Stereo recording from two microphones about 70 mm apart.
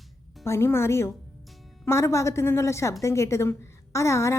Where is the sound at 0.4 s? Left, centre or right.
Left.